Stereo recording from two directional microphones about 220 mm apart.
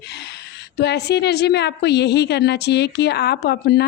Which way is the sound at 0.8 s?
50° left (ahead or behind).